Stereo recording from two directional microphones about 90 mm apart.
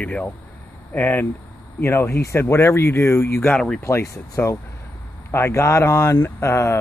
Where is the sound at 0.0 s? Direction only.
15° left (ahead or behind).